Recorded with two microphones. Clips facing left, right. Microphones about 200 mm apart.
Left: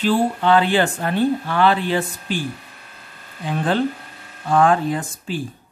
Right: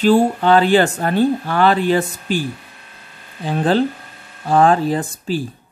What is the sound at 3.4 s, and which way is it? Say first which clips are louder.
Speech: right 4 dB; 35° right (ahead or behind).